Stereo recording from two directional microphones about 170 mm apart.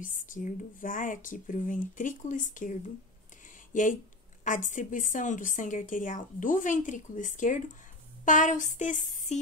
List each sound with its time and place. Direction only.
0.0 s speech: 50° left (ahead or behind)
4.5 s speech: 50° left (ahead or behind)